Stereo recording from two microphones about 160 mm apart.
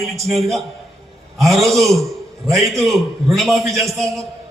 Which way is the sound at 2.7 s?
Centre (ahead or behind).